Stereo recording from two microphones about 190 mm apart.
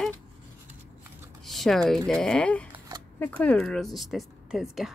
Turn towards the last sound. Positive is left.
turn(degrees=0)  # may be behind; listen again after turning